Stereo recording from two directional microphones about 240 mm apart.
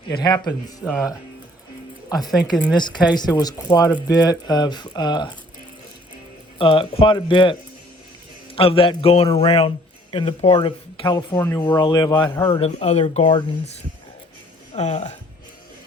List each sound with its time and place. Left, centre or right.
0.1 s speech: centre
0.9 s speech: centre
2.0 s speech: centre
6.6 s a man's voice: left
8.5 s a man's voice: left
11.0 s a man's voice: centre; by 13.4 s left
14.8 s a man's voice: left